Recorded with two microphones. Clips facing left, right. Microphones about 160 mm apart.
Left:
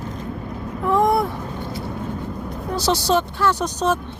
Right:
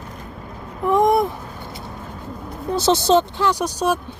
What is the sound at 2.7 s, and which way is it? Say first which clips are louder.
Speech: right 4 dB; 25° right (ahead or behind).